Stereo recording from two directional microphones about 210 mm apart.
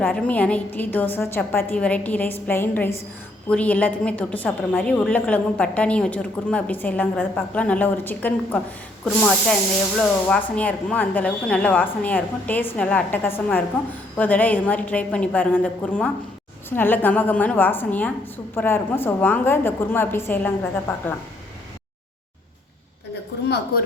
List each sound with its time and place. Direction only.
0.0 s a woman's voice: 5° left (ahead or behind)